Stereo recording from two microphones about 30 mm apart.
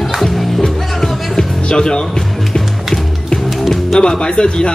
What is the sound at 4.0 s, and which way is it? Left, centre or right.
Speech, left.